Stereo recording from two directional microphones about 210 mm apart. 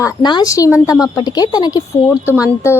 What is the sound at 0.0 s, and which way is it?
A woman's voice, 20° left (ahead or behind).